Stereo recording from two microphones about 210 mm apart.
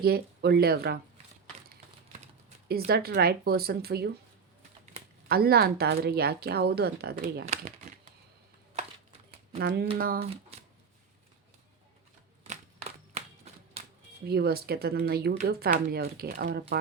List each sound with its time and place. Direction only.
0.0 s speech: 50° right (ahead or behind)
2.9 s speech: 45° right (ahead or behind)
5.3 s speech: 45° right (ahead or behind)
7.4 s crumpling: 30° right (ahead or behind)
9.6 s speech: 50° right (ahead or behind)
10.5 s shuffling cards: 30° right (ahead or behind)
12.5 s a sound: 30° right (ahead or behind)
14.3 s speech: 50° right (ahead or behind)